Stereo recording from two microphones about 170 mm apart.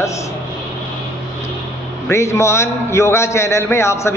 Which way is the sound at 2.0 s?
15° left (ahead or behind).